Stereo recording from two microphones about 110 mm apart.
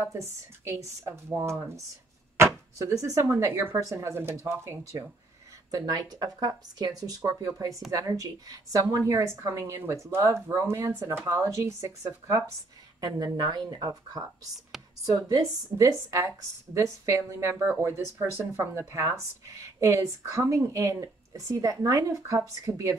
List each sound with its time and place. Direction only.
0.0 s speech: 25° right (ahead or behind)
5.7 s speech: 35° right (ahead or behind)
13.0 s speech: 40° right (ahead or behind)
14.7 s a sound: 5° right (ahead or behind)
15.0 s speech: 30° right (ahead or behind)